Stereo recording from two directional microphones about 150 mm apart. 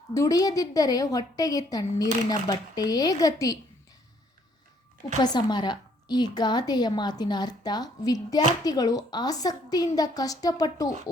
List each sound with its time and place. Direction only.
0.1 s a woman's voice: 20° left (ahead or behind)
5.2 s a woman's voice: 30° left (ahead or behind)